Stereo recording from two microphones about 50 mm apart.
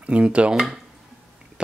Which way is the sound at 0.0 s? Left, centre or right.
Right.